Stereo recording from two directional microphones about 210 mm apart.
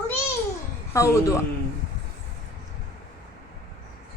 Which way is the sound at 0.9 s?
15° left (ahead or behind).